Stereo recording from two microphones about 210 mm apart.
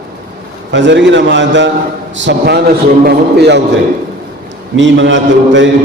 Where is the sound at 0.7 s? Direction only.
60° right (ahead or behind).